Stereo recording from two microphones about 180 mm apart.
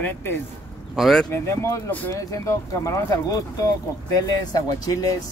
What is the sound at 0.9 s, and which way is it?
Speech, centre (ahead or behind).